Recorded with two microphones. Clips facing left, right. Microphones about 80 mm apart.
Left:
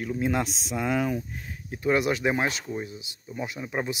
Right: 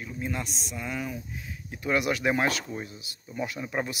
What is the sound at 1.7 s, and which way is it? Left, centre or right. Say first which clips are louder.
Speech: left 3 dB; left.